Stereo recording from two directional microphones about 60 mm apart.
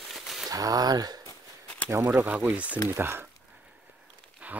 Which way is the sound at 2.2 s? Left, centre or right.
Right.